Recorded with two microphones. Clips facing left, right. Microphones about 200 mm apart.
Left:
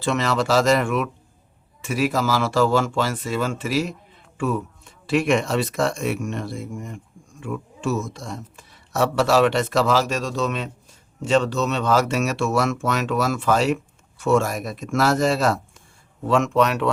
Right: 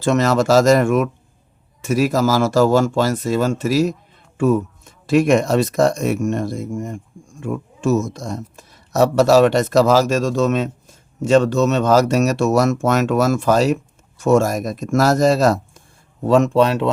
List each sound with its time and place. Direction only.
0.0 s speech: 45° right (ahead or behind); by 16.9 s 30° right (ahead or behind)